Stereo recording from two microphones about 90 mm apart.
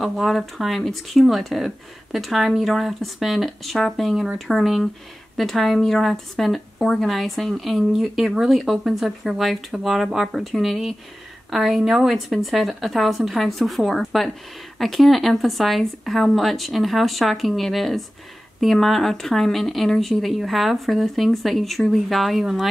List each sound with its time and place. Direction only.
0.0 s speech: centre (ahead or behind)